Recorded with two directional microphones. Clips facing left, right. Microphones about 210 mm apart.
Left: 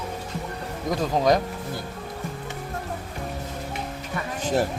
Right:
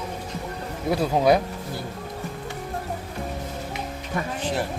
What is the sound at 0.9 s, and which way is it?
Speech, 10° right (ahead or behind).